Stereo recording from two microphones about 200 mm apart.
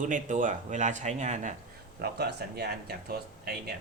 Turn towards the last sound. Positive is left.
turn(degrees=-50)  # may be behind; listen again after turning